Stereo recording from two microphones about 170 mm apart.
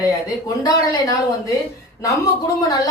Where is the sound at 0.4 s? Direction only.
20° left (ahead or behind).